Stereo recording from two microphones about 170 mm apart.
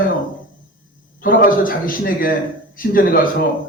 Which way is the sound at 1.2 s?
55° left (ahead or behind).